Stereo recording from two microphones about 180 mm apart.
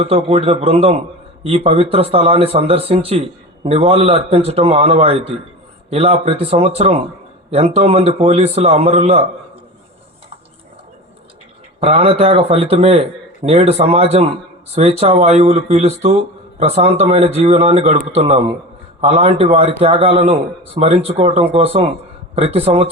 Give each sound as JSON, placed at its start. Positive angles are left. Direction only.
{"t": 0.0, "sound": "speech", "side_deg": -35}
{"t": 11.8, "sound": "speech", "side_deg": -30}